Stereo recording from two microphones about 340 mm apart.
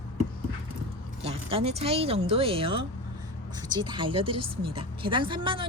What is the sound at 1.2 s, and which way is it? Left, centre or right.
Speech, centre.